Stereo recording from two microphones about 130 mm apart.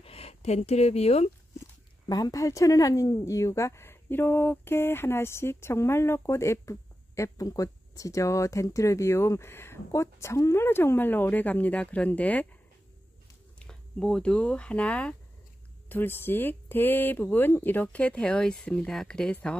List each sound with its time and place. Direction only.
0.0 s speech: 50° left (ahead or behind)
2.0 s speech: 30° left (ahead or behind); by 12.4 s 10° left (ahead or behind)
13.6 s speech: 5° left (ahead or behind)